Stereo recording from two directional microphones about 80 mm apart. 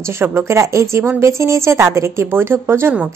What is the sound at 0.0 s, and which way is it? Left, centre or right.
A woman's voice, right.